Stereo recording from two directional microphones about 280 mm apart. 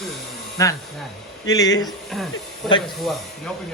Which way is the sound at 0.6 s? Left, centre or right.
Centre.